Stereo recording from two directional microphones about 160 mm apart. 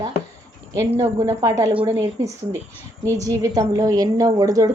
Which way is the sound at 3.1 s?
20° right (ahead or behind).